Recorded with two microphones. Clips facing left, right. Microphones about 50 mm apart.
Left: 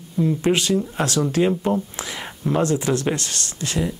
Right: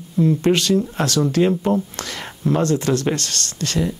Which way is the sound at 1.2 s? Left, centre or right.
Left.